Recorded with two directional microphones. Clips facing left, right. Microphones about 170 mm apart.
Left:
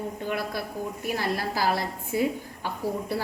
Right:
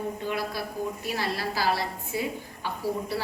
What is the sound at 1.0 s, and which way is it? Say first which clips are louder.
Speech: left 6 dB; 50° left (ahead or behind).